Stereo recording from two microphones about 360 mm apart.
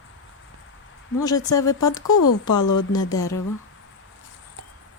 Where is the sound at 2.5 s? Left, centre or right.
Left.